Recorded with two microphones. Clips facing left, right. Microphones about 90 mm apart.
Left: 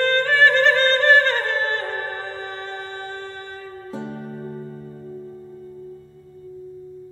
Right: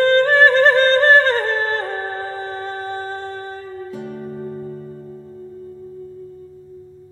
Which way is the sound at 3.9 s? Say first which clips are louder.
Left 3 dB; 30° left (ahead or behind).